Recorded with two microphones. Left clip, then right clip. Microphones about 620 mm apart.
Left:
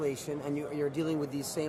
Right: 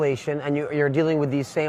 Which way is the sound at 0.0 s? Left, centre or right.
Right.